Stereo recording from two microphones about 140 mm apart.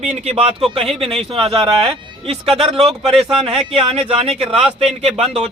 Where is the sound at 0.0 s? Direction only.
50° right (ahead or behind).